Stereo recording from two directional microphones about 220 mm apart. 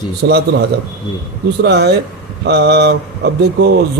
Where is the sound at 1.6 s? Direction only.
50° right (ahead or behind).